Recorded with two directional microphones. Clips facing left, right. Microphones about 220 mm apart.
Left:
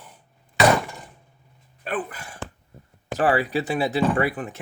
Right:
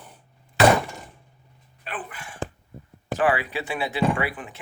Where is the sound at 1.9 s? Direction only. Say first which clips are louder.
Left 7 dB; 40° left (ahead or behind).